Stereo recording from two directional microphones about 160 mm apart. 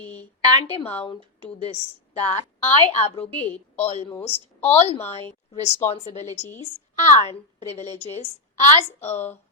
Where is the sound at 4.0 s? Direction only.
15° left (ahead or behind).